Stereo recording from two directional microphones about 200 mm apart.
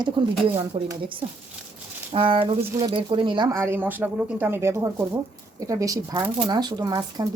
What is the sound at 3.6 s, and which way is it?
Speech, 10° right (ahead or behind).